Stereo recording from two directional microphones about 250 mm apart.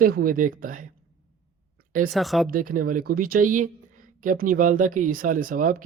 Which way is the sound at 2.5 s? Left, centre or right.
Right.